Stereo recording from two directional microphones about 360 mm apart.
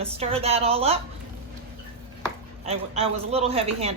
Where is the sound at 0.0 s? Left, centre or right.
Centre.